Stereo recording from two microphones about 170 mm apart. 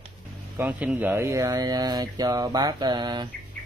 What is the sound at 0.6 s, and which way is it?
Speech, 10° right (ahead or behind).